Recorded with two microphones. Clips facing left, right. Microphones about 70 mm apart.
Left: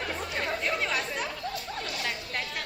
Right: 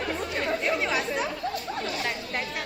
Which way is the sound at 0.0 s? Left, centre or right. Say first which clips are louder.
Right 3 dB; centre.